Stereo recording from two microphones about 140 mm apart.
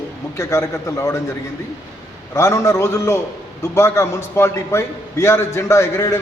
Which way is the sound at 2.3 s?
20° left (ahead or behind).